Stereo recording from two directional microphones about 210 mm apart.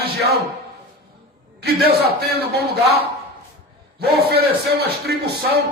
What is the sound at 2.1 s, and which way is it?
Speech, 50° right (ahead or behind).